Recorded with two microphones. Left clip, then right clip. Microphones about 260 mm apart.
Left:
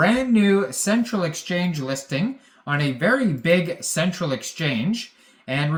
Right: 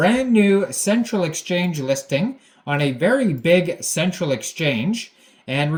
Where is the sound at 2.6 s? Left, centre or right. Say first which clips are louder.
Right 2 dB; centre.